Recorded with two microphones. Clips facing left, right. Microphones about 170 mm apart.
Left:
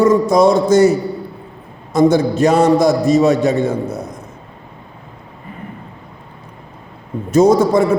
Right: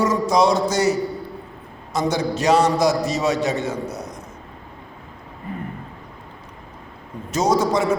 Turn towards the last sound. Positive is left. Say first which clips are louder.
# left 7 dB
turn(degrees=55)  # may be behind; listen again after turning